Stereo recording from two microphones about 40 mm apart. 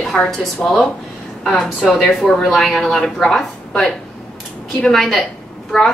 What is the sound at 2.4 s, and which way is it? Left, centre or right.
A woman's voice, centre.